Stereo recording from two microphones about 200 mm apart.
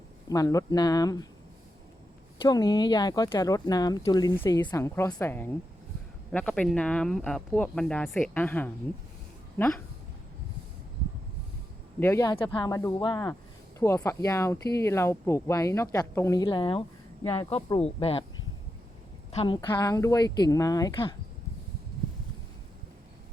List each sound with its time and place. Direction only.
0.3 s speech: 15° left (ahead or behind)
2.4 s speech: 20° left (ahead or behind)
11.9 s speech: 10° left (ahead or behind)
17.2 s speech: 15° left (ahead or behind)
17.7 s speech: 30° left (ahead or behind)
19.3 s speech: 25° left (ahead or behind)